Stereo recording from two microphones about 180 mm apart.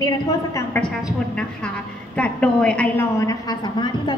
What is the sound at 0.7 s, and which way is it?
A woman's voice, 5° left (ahead or behind).